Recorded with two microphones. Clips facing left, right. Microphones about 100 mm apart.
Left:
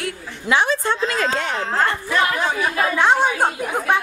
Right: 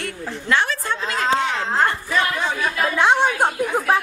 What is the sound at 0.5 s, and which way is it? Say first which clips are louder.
Speech: left 3 dB; 20° left (ahead or behind).